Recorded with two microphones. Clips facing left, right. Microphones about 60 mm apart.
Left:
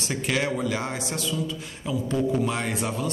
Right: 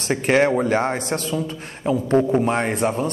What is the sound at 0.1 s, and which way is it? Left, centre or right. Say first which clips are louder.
Speech: right 9 dB; right.